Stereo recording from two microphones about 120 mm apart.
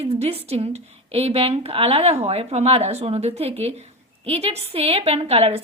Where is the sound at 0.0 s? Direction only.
55° right (ahead or behind).